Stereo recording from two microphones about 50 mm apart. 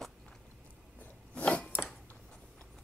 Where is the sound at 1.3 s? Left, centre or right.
Left.